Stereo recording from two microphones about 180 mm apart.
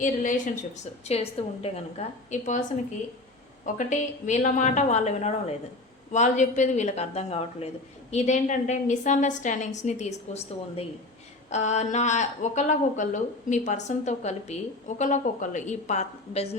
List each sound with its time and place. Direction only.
0.0 s a woman's voice: 45° left (ahead or behind)
1.0 s a woman's voice: 35° left (ahead or behind)
3.8 s speech: 45° left (ahead or behind)